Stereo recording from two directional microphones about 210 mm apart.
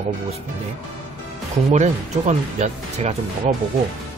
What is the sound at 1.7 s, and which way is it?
Speech, 35° right (ahead or behind).